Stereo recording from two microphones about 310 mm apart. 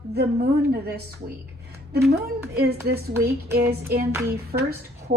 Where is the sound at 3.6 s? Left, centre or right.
Right.